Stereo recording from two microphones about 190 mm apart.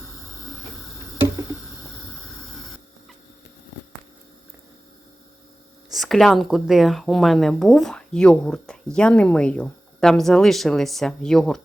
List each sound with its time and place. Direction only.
5.9 s speech: centre (ahead or behind)